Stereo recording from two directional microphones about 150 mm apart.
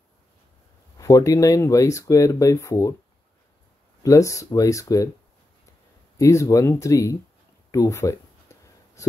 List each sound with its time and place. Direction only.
0.9 s speech: 20° left (ahead or behind)
4.0 s speech: 20° left (ahead or behind)
6.1 s speech: 20° left (ahead or behind)
7.7 s a sound: 20° left (ahead or behind)